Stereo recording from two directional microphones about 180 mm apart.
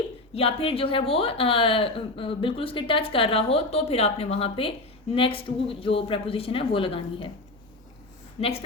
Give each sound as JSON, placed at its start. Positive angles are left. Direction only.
{"t": 0.3, "sound": "speech", "side_deg": 30}
{"t": 8.4, "sound": "speech", "side_deg": 35}